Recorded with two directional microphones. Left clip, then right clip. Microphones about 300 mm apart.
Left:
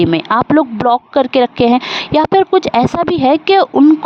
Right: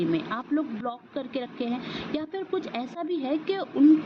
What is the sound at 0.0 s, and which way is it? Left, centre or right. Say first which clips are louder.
Speech: left 16 dB; left.